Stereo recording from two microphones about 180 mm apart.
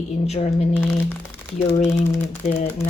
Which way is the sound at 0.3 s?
35° left (ahead or behind).